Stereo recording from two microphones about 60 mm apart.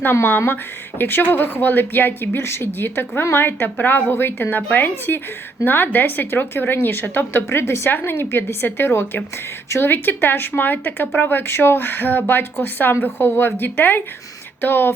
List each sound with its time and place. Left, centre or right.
0.0 s speech: left
9.9 s speech: left